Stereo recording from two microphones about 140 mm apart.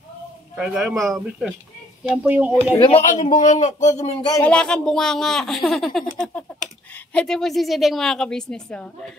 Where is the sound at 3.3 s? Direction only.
60° left (ahead or behind).